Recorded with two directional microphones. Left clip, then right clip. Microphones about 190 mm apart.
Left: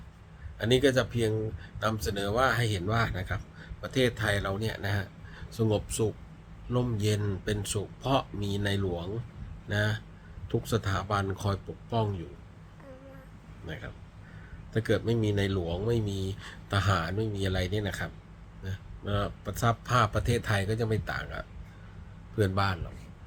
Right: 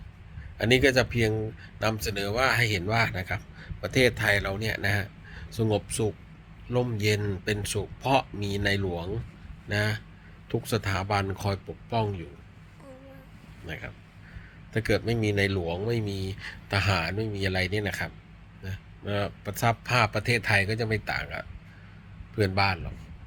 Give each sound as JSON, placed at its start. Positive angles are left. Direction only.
{"t": 0.6, "sound": "a man's voice", "side_deg": 15}
{"t": 14.7, "sound": "speech", "side_deg": 10}